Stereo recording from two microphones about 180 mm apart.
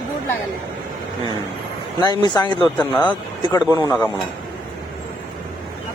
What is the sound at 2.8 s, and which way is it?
Speech, 10° left (ahead or behind).